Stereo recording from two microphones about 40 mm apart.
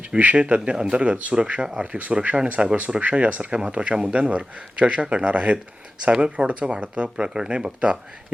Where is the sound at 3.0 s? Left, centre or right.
Right.